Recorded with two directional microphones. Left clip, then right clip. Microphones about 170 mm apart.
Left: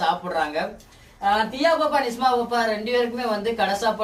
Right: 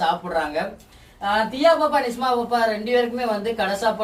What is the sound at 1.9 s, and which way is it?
A woman's voice, 30° left (ahead or behind).